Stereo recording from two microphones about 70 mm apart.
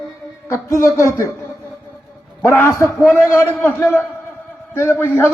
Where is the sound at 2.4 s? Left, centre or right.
Left.